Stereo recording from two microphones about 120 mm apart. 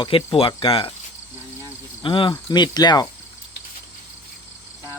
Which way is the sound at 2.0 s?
45° left (ahead or behind).